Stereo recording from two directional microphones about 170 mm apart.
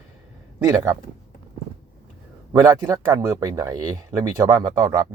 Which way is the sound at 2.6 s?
20° right (ahead or behind).